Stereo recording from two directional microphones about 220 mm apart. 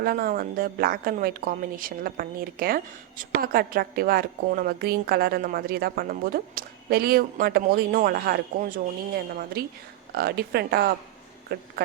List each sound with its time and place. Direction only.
0.0 s a woman's voice: 45° right (ahead or behind)